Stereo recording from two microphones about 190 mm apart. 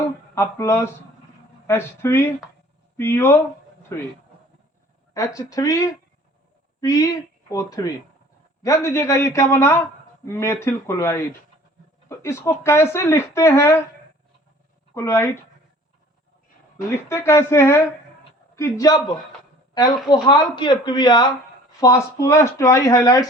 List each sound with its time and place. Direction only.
0.3 s speech: 15° left (ahead or behind)
5.1 s speech: 20° left (ahead or behind)
14.9 s speech: 15° left (ahead or behind)
16.9 s speech: 15° left (ahead or behind)
20.2 s speech: 25° left (ahead or behind)